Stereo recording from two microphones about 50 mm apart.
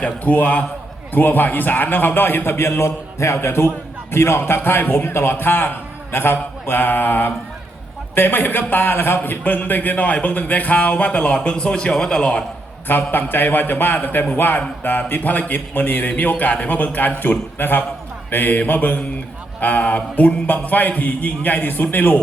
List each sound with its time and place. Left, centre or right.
0.0 s a man's voice: left; by 12.5 s centre
12.9 s a man's voice: left